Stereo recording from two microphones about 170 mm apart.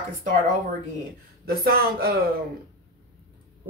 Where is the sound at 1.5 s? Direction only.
65° right (ahead or behind).